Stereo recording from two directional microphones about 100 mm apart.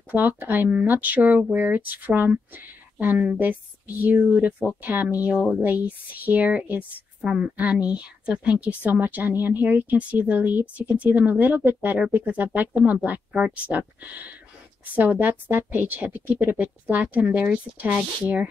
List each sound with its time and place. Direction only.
0.1 s speech: 20° right (ahead or behind)